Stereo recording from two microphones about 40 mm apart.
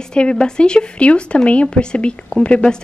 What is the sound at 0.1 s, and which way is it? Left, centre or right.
A woman's voice, left.